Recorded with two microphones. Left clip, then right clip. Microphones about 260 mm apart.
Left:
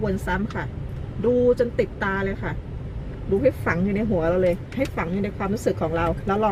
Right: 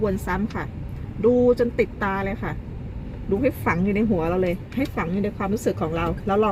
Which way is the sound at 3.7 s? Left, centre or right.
Right.